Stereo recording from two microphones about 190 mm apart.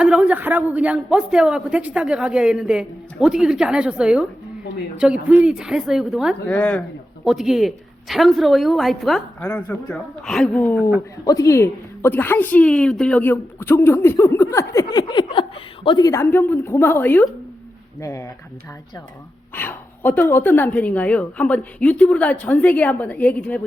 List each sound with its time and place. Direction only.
0.0 s speech: 5° right (ahead or behind)
5.3 s speech: 5° right (ahead or behind)
6.4 s a woman's voice: 10° left (ahead or behind)
7.3 s a woman's voice: centre (ahead or behind); by 18.3 s 15° left (ahead or behind)
19.5 s a woman's voice: 10° left (ahead or behind)